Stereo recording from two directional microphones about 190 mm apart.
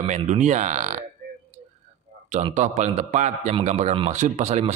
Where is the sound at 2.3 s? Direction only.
40° right (ahead or behind).